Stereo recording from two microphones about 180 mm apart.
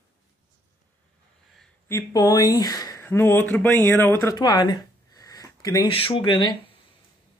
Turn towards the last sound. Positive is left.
turn(degrees=25)  # may be behind; listen again after turning